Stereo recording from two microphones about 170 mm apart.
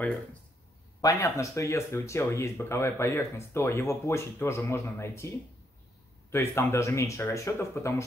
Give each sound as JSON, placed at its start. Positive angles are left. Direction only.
{"t": 0.0, "sound": "speech", "side_deg": 10}
{"t": 6.3, "sound": "speech", "side_deg": 15}